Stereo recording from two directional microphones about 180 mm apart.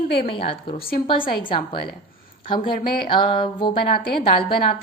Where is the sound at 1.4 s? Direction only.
25° left (ahead or behind).